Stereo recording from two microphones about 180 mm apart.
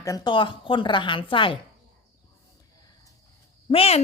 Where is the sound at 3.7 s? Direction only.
35° left (ahead or behind).